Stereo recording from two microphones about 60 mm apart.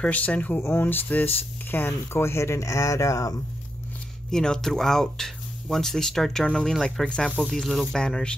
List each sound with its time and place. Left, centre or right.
0.0 s speech: left
0.6 s speech: left
0.8 s speech: left
4.3 s speech: centre